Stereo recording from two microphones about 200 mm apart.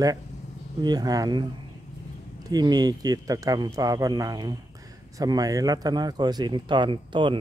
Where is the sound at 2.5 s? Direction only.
20° right (ahead or behind).